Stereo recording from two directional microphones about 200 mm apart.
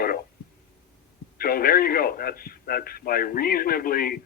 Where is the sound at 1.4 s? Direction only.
45° left (ahead or behind).